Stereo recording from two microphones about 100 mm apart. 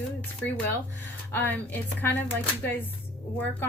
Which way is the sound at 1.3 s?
15° left (ahead or behind).